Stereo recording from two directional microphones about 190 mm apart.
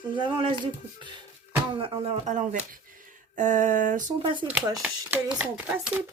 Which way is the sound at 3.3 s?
40° right (ahead or behind).